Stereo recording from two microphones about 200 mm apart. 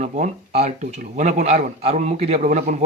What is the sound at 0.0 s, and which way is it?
A man's voice, 35° right (ahead or behind).